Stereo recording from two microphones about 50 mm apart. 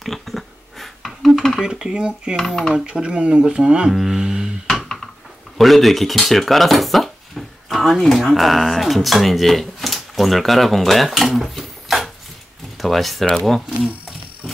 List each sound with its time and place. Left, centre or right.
0.0 s a sound: centre
1.6 s speech: centre
2.3 s speech: centre
2.7 s speech: centre
3.9 s speech: centre
4.2 s music: centre
5.6 s speech: centre